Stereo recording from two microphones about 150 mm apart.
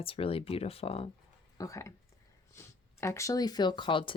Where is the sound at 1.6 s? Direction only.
20° left (ahead or behind).